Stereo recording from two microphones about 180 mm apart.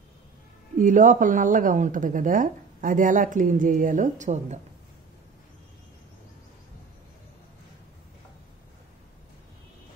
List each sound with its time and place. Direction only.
0.7 s speech: 45° right (ahead or behind)